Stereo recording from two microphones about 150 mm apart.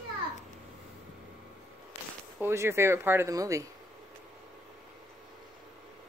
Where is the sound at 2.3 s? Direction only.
15° right (ahead or behind).